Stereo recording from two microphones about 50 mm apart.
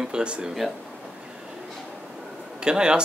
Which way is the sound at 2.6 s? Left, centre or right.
Centre.